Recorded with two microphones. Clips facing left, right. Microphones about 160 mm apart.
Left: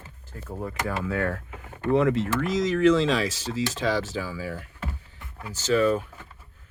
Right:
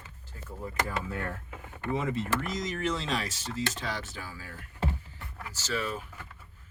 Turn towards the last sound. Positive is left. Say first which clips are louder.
# left 12 dB
turn(degrees=60)  # may be behind; listen again after turning